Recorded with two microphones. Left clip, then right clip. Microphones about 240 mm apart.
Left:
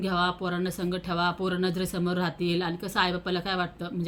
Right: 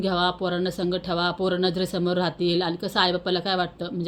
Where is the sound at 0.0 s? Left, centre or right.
Centre.